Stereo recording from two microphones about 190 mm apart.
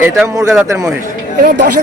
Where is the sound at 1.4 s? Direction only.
50° right (ahead or behind).